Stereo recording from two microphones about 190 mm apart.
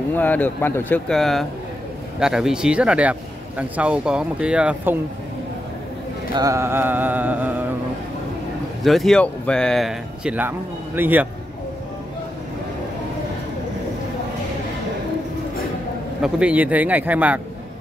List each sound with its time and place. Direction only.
0.1 s speech: 10° left (ahead or behind); by 4.9 s 5° right (ahead or behind)
6.3 s mantra: 15° right (ahead or behind)
8.8 s speech: centre (ahead or behind)
11.0 s mantra: 10° right (ahead or behind)
16.2 s mantra: 5° right (ahead or behind)